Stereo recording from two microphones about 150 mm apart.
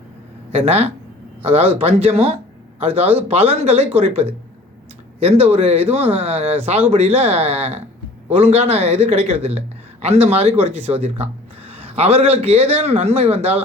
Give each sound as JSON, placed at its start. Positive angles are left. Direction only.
{"t": 0.5, "sound": "a man's voice", "side_deg": -40}